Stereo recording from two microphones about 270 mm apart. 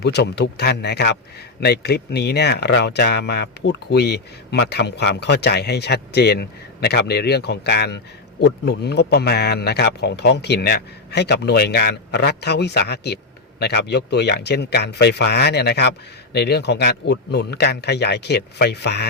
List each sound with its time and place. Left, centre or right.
0.0 s speech: left